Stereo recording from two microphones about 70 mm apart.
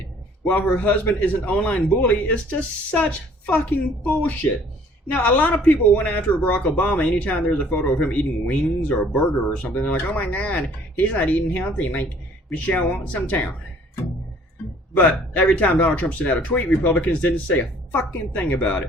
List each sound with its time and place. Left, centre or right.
0.4 s speech: left
14.9 s speech: centre